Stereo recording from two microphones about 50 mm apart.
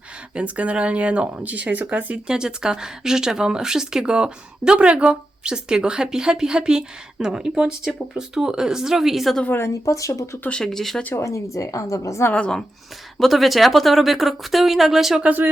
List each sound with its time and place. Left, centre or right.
0.3 s speech: right
2.2 s speech: centre
9.5 s a woman's voice: left
10.5 s speech: centre
11.2 s a woman's voice: left
13.1 s speech: centre
15.2 s speech: right